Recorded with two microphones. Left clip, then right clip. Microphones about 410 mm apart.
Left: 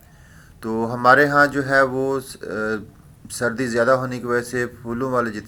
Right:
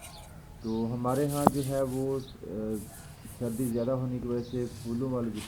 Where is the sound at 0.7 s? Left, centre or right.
Left.